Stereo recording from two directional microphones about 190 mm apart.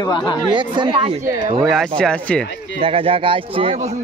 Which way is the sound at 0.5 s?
25° right (ahead or behind).